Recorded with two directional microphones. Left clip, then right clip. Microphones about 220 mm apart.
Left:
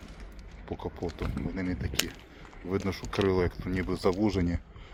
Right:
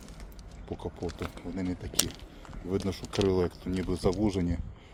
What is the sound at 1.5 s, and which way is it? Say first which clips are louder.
Speech: left 1 dB; 10° right (ahead or behind).